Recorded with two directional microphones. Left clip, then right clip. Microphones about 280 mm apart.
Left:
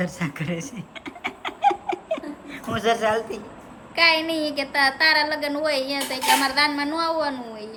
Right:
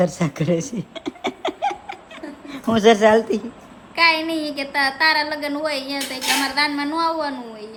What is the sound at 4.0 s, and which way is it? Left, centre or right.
A woman's voice, centre.